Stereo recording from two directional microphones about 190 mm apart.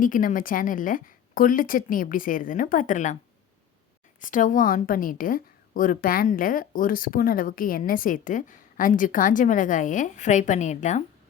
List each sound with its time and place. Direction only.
0.0 s a woman's voice: 45° left (ahead or behind)
4.2 s a woman's voice: 45° left (ahead or behind)